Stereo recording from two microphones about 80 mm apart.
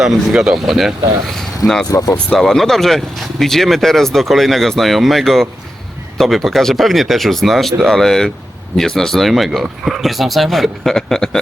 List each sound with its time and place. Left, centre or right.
0.0 s speech: centre
1.9 s speech: left
2.3 s speech: centre